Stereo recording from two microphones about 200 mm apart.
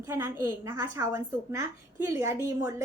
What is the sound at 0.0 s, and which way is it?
A woman's voice, 10° right (ahead or behind).